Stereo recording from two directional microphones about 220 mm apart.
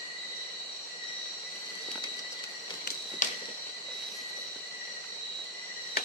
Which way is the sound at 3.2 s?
35° left (ahead or behind).